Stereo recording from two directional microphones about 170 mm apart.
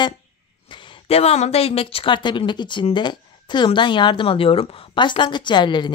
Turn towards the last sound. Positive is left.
turn(degrees=25)  # may be behind; listen again after turning